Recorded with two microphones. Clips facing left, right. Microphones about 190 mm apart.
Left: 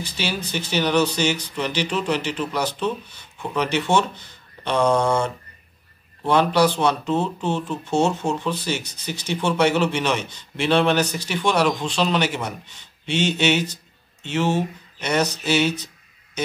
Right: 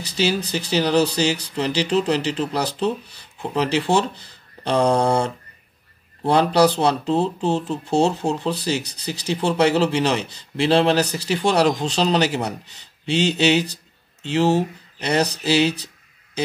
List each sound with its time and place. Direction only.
0.0 s speech: 35° right (ahead or behind)